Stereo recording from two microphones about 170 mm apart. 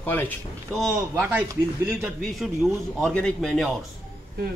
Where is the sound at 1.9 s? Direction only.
5° right (ahead or behind).